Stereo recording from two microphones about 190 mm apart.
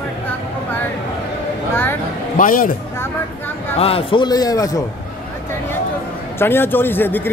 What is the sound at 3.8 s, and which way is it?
A man's voice, 30° left (ahead or behind).